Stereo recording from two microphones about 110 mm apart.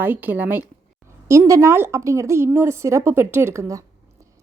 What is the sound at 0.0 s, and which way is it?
Speech, 20° right (ahead or behind).